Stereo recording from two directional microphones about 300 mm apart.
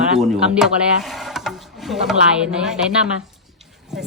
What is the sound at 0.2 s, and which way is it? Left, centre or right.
Speech, centre.